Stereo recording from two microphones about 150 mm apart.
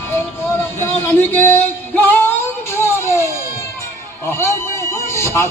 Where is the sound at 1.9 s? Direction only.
10° left (ahead or behind).